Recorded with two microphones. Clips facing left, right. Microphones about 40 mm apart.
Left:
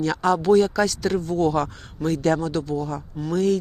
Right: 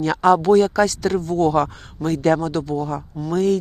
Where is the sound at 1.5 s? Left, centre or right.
Right.